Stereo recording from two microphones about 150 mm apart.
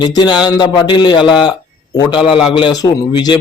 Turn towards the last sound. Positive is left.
turn(degrees=30)  # may be behind; listen again after turning